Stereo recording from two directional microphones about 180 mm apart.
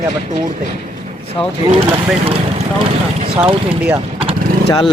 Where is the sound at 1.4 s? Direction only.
25° left (ahead or behind).